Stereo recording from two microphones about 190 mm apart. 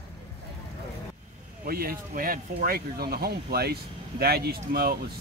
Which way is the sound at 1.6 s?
50° right (ahead or behind).